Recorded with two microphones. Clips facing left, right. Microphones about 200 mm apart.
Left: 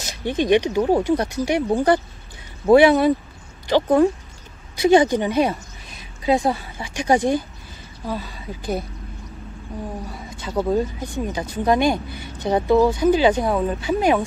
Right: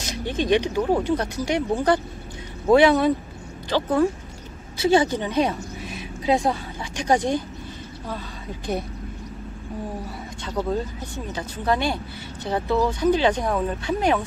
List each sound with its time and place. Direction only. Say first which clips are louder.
0.0 s speech: left 3 dB; 10° left (ahead or behind)
5.9 s a sound: left 2 dB; centre (ahead or behind)
6.8 s speech: left 3 dB; 10° left (ahead or behind)
10.4 s speech: left 5 dB; 10° left (ahead or behind)